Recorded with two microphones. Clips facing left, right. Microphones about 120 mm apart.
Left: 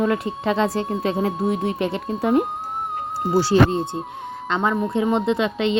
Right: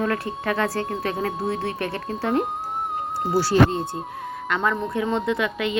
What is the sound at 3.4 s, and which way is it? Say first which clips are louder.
A woman's voice: left 2 dB; 25° left (ahead or behind).